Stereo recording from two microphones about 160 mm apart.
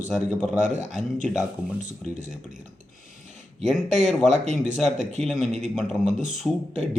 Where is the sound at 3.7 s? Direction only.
Centre (ahead or behind).